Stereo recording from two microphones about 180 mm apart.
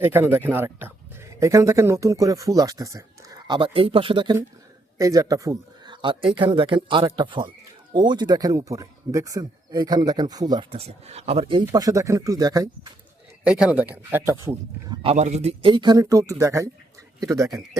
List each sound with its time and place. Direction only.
0.0 s speech: 10° right (ahead or behind)
13.4 s speech: 5° right (ahead or behind)
15.0 s speech: 35° right (ahead or behind); by 17.6 s 20° right (ahead or behind)